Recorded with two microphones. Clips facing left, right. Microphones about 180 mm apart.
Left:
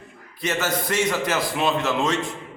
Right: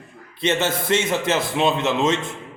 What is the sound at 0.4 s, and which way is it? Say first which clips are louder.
A man's voice: right 3 dB; 25° right (ahead or behind).